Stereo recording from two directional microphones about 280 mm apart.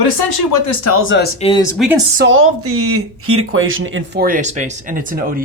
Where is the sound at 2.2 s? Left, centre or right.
Right.